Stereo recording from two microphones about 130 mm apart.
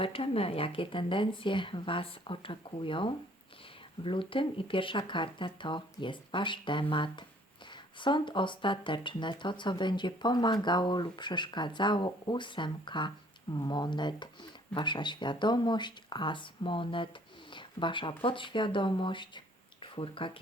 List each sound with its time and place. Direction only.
0.0 s speech: 45° left (ahead or behind)